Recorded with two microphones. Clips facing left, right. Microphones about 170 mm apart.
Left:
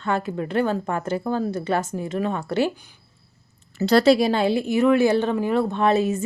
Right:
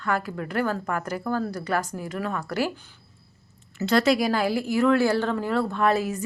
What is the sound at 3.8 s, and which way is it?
Speech, 35° left (ahead or behind).